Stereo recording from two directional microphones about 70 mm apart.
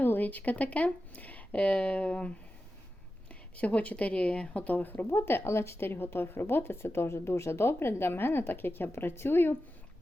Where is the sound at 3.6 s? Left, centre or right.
Centre.